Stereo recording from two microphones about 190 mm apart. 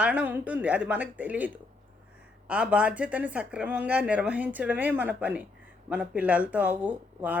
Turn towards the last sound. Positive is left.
turn(degrees=-10)  # may be behind; listen again after turning